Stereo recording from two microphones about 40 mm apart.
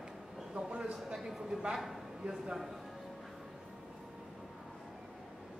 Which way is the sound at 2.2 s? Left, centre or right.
Centre.